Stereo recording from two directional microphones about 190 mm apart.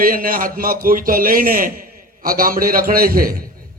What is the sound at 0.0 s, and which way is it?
A man's voice, 50° right (ahead or behind).